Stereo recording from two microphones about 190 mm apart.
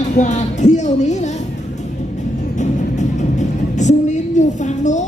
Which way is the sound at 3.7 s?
40° left (ahead or behind).